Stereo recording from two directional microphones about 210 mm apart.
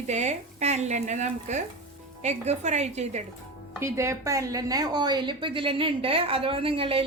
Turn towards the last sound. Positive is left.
turn(degrees=-25)  # may be behind; listen again after turning